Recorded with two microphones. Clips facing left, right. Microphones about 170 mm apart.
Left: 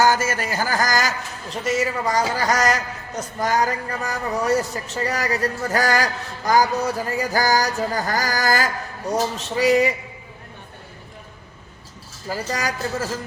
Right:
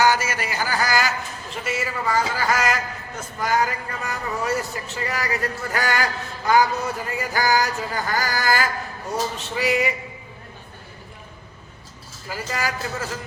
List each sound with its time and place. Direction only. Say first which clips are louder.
0.0 s a man's voice: left 1 dB; 45° left (ahead or behind)
12.3 s a man's voice: left 2 dB; 40° left (ahead or behind)